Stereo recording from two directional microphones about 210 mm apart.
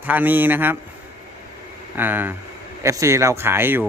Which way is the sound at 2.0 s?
10° right (ahead or behind).